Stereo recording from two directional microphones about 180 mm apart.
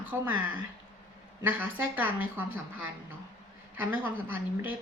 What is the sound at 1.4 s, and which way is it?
Speech, 10° right (ahead or behind).